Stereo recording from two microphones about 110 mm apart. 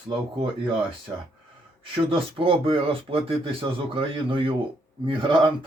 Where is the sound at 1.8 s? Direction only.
55° right (ahead or behind).